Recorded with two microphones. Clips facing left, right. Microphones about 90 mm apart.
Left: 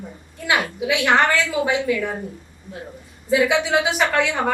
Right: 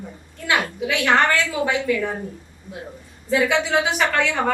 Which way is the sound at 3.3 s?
15° left (ahead or behind).